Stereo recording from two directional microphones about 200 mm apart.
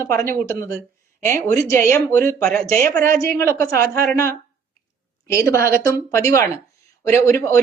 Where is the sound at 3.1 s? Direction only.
45° right (ahead or behind).